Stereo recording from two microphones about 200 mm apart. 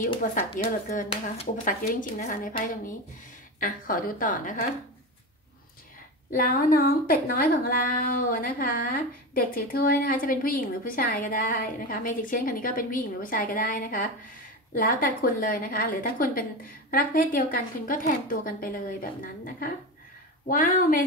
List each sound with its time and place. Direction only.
0.0 s a woman's voice: 40° left (ahead or behind)
6.3 s a woman's voice: 45° left (ahead or behind)